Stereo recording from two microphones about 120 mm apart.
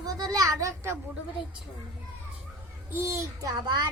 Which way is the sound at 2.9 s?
25° right (ahead or behind).